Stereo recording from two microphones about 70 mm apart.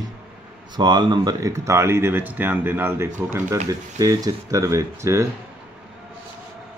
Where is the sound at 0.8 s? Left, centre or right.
Right.